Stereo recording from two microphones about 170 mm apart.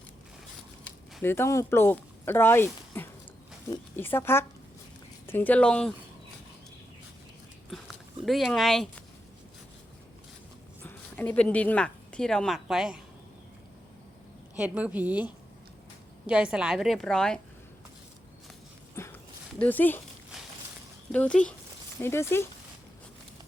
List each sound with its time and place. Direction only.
1.2 s speech: 15° left (ahead or behind)
7.7 s a sound: centre (ahead or behind)
8.2 s a woman's voice: centre (ahead or behind)
10.8 s speech: 10° left (ahead or behind)
14.5 s a woman's voice: 5° right (ahead or behind)
19.0 s a sound: 15° left (ahead or behind)
19.5 s speech: 10° left (ahead or behind)
20.3 s a sound: 5° right (ahead or behind)
21.1 s speech: 5° left (ahead or behind)